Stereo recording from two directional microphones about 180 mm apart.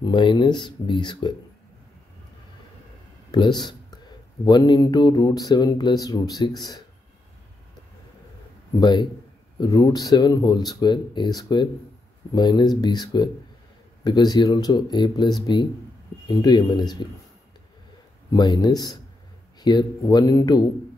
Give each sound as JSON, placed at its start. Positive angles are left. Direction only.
{"t": 0.0, "sound": "speech", "side_deg": 25}
{"t": 3.3, "sound": "speech", "side_deg": 25}
{"t": 8.7, "sound": "speech", "side_deg": 25}
{"t": 18.3, "sound": "speech", "side_deg": 25}